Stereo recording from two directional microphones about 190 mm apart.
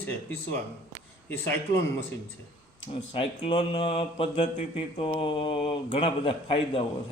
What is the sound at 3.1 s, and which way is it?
Mantra, 30° left (ahead or behind).